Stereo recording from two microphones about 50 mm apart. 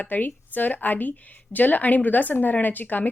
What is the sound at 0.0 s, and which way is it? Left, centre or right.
Speech, left.